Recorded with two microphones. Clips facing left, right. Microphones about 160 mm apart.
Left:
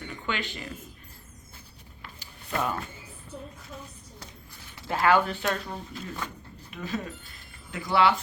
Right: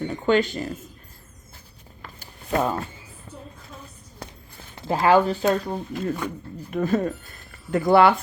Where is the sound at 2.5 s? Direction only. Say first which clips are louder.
Right 6 dB; 30° right (ahead or behind).